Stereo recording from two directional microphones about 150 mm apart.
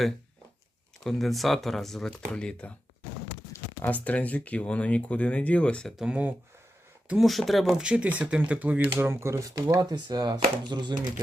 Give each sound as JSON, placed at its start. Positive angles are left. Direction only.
{"t": 1.0, "sound": "speech", "side_deg": 0}
{"t": 6.0, "sound": "speech", "side_deg": -10}